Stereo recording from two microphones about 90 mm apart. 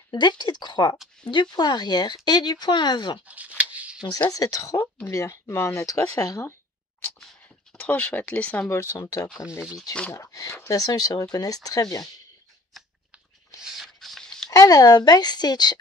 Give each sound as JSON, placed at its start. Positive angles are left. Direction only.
{"t": 0.1, "sound": "a woman's voice", "side_deg": 55}
{"t": 3.3, "sound": "shuffling cards", "side_deg": -15}
{"t": 4.0, "sound": "speech", "side_deg": 50}
{"t": 4.7, "sound": "speech", "side_deg": 25}
{"t": 5.1, "sound": "speech", "side_deg": 35}
{"t": 7.7, "sound": "speech", "side_deg": 15}
{"t": 8.6, "sound": "speech", "side_deg": 25}
{"t": 8.9, "sound": "a woman's voice", "side_deg": 40}
{"t": 13.6, "sound": "a sound", "side_deg": -5}
{"t": 14.5, "sound": "a woman's voice", "side_deg": 40}